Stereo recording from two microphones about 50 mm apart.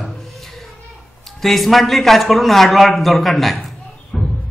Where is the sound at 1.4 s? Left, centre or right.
Centre.